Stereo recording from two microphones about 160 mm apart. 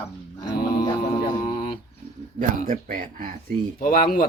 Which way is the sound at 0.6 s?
65° left (ahead or behind).